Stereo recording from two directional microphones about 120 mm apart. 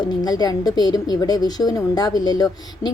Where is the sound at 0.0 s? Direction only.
35° left (ahead or behind).